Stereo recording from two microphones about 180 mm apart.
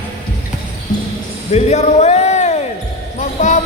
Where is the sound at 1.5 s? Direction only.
40° left (ahead or behind).